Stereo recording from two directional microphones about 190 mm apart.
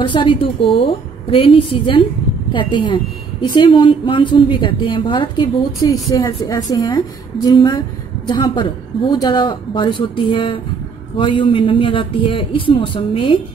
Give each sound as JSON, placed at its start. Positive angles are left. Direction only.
{"t": 0.0, "sound": "a woman's voice", "side_deg": 25}